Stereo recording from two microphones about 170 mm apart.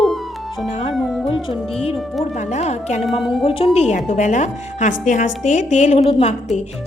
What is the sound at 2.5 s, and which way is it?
A woman's voice, 40° left (ahead or behind).